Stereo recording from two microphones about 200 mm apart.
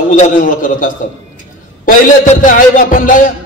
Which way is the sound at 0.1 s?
40° left (ahead or behind).